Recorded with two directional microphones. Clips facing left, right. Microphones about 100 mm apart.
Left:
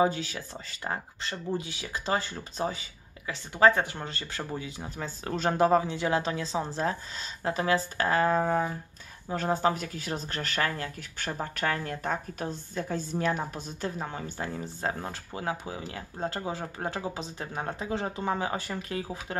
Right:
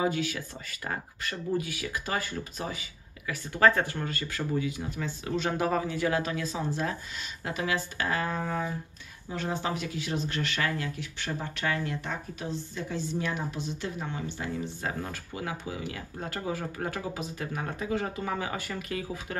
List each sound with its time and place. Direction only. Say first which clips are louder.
0.0 s speech: left 2 dB; 30° left (ahead or behind)
3.5 s speech: left 1 dB; 20° left (ahead or behind)